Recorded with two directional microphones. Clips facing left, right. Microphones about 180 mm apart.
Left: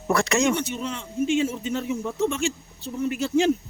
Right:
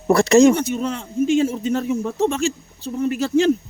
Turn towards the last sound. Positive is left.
turn(degrees=-40)  # may be behind; listen again after turning